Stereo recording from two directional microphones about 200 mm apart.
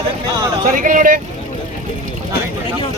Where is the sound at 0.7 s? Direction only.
40° right (ahead or behind).